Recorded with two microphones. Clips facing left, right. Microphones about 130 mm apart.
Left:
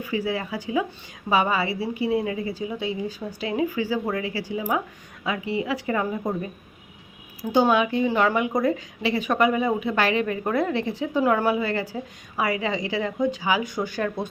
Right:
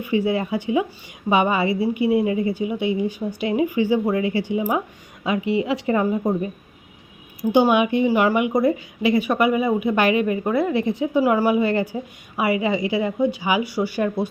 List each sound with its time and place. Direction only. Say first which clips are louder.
0.0 s a woman's voice: right 6 dB; 25° right (ahead or behind)
7.5 s a woman's voice: right 3 dB; 15° right (ahead or behind)